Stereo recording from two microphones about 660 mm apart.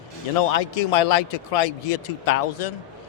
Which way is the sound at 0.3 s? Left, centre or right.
Left.